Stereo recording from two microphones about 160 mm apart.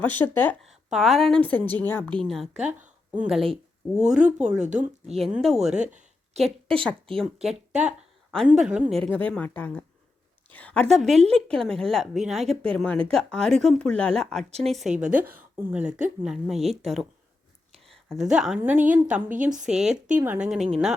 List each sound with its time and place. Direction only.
0.0 s a woman's voice: 10° left (ahead or behind)
0.6 s a woman's voice: centre (ahead or behind)
2.2 s speech: centre (ahead or behind)
5.7 s a sound: 50° right (ahead or behind)
6.8 s a woman's voice: 5° left (ahead or behind)
18.1 s speech: 5° right (ahead or behind)